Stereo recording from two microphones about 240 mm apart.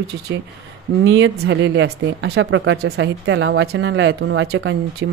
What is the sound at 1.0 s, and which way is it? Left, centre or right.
Speech, right.